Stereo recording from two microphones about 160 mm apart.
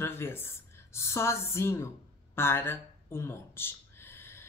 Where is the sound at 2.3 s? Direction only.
15° left (ahead or behind).